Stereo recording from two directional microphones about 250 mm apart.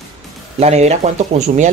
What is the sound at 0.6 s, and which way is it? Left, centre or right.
Speech, right.